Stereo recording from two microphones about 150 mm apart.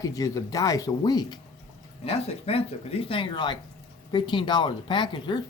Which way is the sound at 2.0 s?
40° left (ahead or behind).